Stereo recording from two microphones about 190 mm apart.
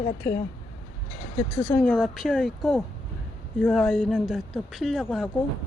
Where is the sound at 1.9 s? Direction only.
Centre (ahead or behind).